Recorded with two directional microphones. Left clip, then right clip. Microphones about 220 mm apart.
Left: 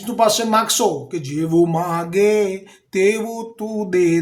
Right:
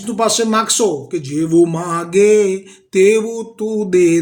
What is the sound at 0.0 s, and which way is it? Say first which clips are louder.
Speech: right 1 dB; 5° left (ahead or behind).